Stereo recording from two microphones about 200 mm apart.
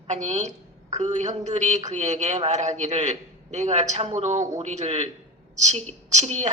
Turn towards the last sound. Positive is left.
turn(degrees=-35)  # may be behind; listen again after turning